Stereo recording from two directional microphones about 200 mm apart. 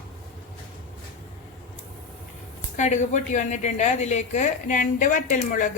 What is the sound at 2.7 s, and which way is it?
A woman's voice, 35° left (ahead or behind).